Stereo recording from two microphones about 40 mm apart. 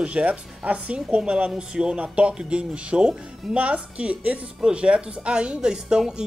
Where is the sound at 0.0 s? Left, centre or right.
Right.